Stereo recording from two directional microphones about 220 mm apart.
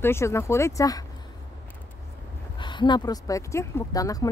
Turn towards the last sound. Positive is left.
turn(degrees=15)  # may be behind; listen again after turning